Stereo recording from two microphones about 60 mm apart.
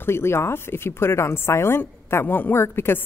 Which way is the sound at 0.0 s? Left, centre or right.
Left.